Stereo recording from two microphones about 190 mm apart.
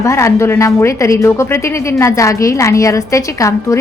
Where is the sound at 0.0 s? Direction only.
15° left (ahead or behind).